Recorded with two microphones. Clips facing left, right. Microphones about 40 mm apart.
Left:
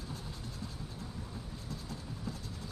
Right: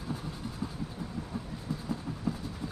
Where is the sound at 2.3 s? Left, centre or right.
Right.